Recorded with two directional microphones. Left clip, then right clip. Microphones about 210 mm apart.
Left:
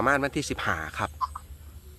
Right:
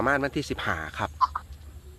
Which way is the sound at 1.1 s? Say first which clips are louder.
Right 7 dB; 20° right (ahead or behind).